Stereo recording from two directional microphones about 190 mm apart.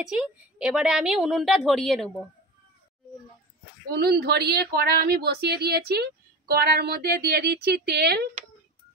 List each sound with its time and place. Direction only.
0.0 s a woman's voice: 5° right (ahead or behind)
4.0 s speech: 60° right (ahead or behind)